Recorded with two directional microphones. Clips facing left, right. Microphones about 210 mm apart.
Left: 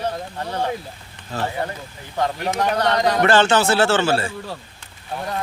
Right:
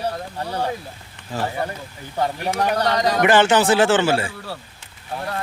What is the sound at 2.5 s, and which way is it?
A man's voice, 10° right (ahead or behind).